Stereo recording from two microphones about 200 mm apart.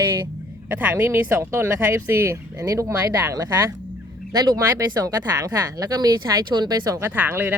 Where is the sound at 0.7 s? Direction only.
10° right (ahead or behind).